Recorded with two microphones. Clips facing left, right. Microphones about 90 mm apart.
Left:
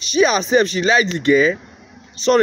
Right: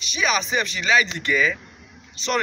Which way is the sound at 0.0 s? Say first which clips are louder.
Left 8 dB; 35° left (ahead or behind).